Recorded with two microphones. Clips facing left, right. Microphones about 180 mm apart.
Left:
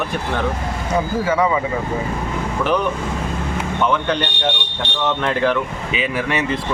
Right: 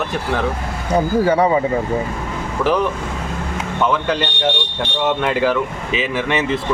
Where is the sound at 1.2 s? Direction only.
35° right (ahead or behind).